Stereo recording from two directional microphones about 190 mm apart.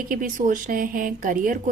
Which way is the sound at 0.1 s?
45° right (ahead or behind).